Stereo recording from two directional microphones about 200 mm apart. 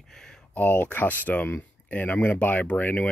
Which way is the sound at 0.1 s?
Centre (ahead or behind).